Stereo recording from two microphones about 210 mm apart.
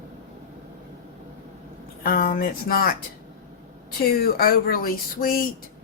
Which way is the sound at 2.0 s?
45° left (ahead or behind).